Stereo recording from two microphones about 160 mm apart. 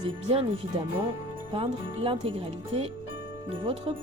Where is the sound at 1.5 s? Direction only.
35° right (ahead or behind).